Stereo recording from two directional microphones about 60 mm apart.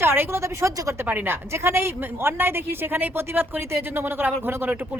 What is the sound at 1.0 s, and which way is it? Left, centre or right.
Speech, right.